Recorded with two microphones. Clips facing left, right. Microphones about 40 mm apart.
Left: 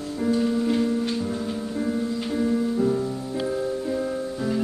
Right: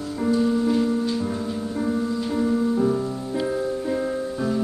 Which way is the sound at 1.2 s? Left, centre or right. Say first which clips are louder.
Right 1 dB; right.